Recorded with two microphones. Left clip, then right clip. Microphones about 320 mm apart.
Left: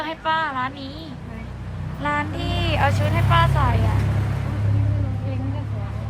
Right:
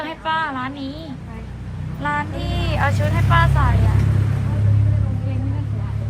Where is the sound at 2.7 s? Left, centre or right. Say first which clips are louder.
Even; centre.